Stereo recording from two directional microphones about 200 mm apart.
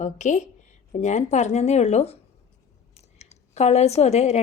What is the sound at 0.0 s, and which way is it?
A woman's voice, 35° left (ahead or behind).